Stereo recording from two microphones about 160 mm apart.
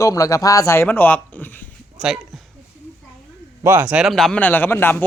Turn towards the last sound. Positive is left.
turn(degrees=10)  # may be behind; listen again after turning